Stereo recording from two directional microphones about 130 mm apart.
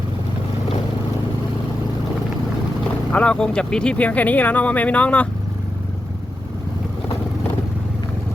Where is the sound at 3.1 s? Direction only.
10° left (ahead or behind).